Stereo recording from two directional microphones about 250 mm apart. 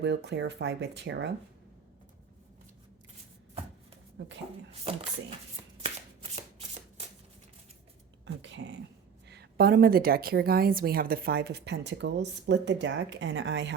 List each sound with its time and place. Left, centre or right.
0.0 s speech: right
8.2 s a woman's voice: right